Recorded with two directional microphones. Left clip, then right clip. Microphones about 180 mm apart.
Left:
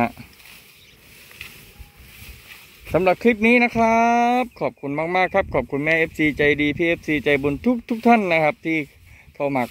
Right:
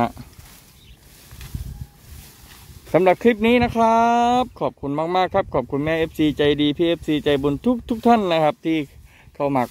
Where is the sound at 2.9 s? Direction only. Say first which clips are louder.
Right 2 dB; 20° right (ahead or behind).